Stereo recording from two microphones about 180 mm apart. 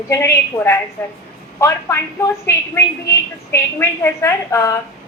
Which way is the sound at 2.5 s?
15° left (ahead or behind).